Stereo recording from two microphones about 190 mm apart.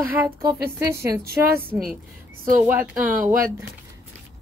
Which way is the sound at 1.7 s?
Centre (ahead or behind).